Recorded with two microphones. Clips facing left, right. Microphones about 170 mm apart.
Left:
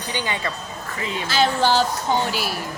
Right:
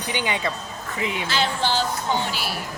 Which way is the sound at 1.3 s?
45° left (ahead or behind).